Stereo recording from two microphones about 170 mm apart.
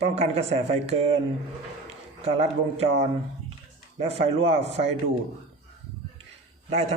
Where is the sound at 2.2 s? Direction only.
40° right (ahead or behind).